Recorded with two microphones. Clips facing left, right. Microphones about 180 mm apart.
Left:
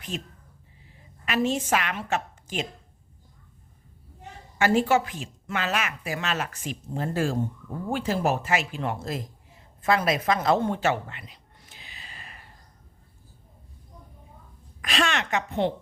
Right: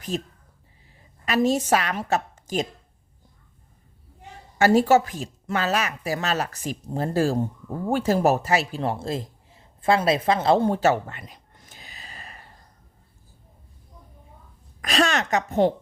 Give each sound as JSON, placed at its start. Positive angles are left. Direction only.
{"t": 0.1, "sound": "a woman's voice", "side_deg": -40}
{"t": 4.5, "sound": "a woman's voice", "side_deg": -40}
{"t": 14.8, "sound": "a woman's voice", "side_deg": -40}